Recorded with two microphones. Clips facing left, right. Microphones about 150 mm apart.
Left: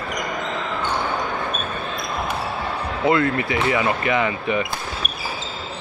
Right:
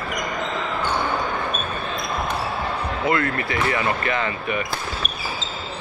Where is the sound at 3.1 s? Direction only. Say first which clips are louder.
Left 4 dB; 15° left (ahead or behind).